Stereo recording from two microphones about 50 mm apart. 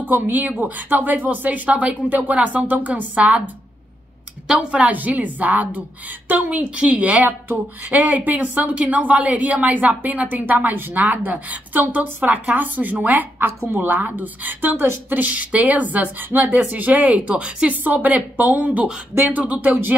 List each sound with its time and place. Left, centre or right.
0.0 s a woman's voice: right
1.7 s a woman's voice: right
4.6 s a woman's voice: right
10.2 s a woman's voice: right
10.5 s a woman's voice: right
17.8 s a woman's voice: right